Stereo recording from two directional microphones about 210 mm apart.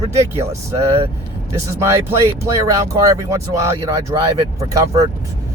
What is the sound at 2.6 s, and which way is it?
Speech, 15° right (ahead or behind).